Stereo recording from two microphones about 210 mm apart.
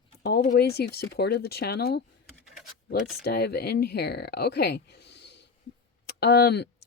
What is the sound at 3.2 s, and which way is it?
Speech, 50° left (ahead or behind).